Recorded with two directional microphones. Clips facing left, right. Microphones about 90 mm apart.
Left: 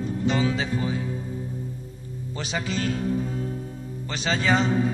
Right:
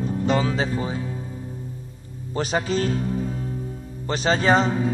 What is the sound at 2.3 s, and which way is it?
Music, 40° right (ahead or behind).